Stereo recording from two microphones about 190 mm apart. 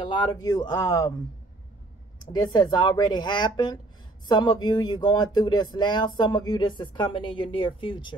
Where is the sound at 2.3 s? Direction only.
20° left (ahead or behind).